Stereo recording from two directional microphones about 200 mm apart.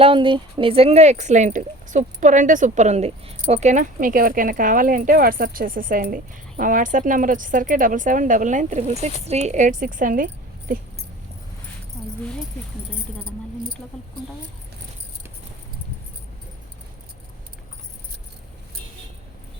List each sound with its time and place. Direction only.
0.0 s speech: 25° right (ahead or behind); by 10.2 s 40° right (ahead or behind)